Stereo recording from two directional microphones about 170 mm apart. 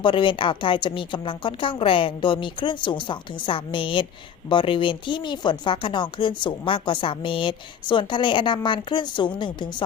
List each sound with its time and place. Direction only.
0.0 s speech: 30° left (ahead or behind)